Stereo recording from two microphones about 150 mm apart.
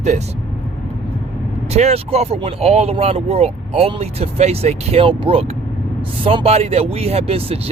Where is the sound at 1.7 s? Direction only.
45° right (ahead or behind).